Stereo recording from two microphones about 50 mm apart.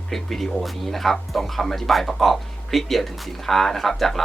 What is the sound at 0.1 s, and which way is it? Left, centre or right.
Speech, centre.